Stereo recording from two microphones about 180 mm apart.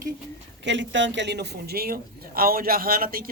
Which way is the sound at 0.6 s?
85° right.